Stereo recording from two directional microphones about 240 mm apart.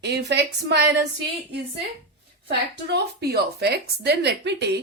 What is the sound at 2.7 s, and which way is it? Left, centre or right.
Speech, right.